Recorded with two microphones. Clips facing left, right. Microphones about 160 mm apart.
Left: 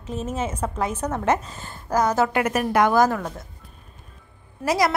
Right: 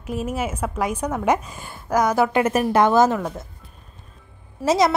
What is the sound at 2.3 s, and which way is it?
Speech, 25° right (ahead or behind).